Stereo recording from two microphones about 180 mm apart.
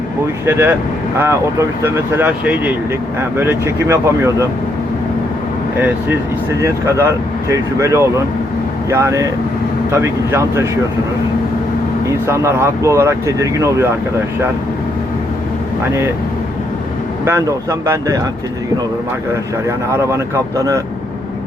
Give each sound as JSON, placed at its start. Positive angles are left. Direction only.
{"t": 0.4, "sound": "speech", "side_deg": -10}
{"t": 6.6, "sound": "speech", "side_deg": -15}
{"t": 12.2, "sound": "speech", "side_deg": -15}
{"t": 17.2, "sound": "speech", "side_deg": -15}
{"t": 19.9, "sound": "speech", "side_deg": -15}